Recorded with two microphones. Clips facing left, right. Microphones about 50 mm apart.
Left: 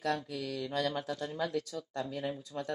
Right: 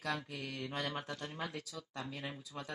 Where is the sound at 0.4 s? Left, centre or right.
Right.